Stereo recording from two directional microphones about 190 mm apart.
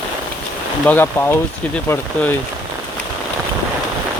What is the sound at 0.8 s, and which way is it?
Speech, 10° left (ahead or behind).